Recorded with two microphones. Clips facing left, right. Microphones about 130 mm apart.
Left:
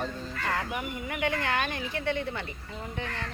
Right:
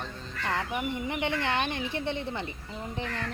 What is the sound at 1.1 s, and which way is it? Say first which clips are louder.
A woman's voice: left 2 dB; 25° right (ahead or behind).